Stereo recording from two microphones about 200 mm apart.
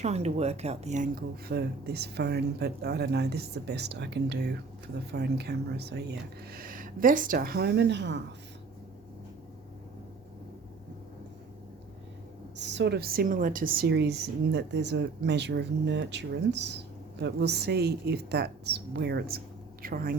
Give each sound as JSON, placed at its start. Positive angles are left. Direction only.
{"t": 0.0, "sound": "speech", "side_deg": -35}
{"t": 12.5, "sound": "a woman's voice", "side_deg": -60}